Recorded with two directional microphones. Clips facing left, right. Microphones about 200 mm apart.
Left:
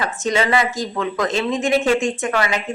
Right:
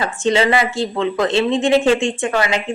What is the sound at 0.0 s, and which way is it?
Speech, 30° right (ahead or behind).